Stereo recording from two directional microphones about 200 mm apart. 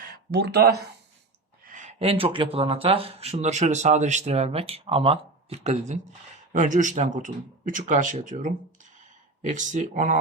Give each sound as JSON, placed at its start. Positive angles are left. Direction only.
{"t": 0.3, "sound": "speech", "side_deg": -55}
{"t": 1.7, "sound": "speech", "side_deg": -35}